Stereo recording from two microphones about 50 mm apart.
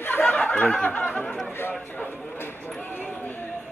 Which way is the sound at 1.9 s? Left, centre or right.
Left.